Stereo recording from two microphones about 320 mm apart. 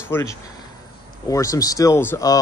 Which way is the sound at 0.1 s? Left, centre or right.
Centre.